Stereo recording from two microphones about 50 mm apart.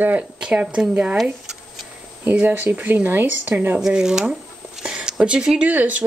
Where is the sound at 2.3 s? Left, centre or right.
Right.